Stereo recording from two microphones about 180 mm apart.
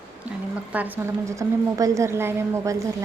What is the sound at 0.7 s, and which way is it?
A woman's voice, 10° right (ahead or behind).